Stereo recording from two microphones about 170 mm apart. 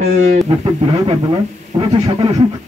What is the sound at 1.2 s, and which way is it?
Speech, 25° right (ahead or behind).